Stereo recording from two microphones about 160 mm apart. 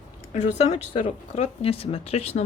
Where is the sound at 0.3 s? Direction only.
45° left (ahead or behind).